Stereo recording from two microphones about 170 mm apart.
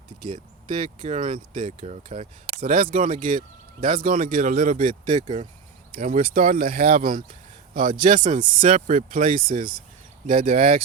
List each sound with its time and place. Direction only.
0.7 s speech: 50° right (ahead or behind)
5.9 s speech: 55° right (ahead or behind)